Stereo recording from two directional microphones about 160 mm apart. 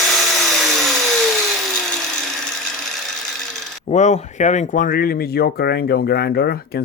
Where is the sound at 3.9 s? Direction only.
45° left (ahead or behind).